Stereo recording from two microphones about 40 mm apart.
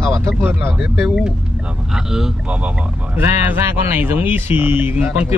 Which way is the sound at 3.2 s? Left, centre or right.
Right.